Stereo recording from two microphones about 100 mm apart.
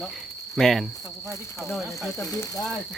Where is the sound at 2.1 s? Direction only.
35° left (ahead or behind).